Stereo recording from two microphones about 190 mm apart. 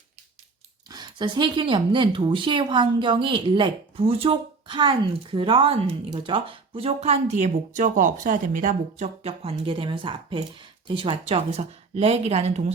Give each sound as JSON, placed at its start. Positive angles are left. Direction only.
{"t": 0.9, "sound": "speech", "side_deg": -20}